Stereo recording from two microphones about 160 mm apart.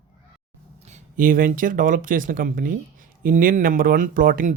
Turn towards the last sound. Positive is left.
turn(degrees=-60)  # may be behind; listen again after turning